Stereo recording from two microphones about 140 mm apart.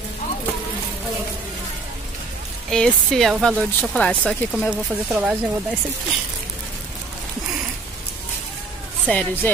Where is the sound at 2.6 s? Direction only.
5° left (ahead or behind).